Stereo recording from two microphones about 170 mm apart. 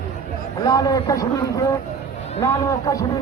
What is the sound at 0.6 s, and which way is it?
Speech, 20° left (ahead or behind).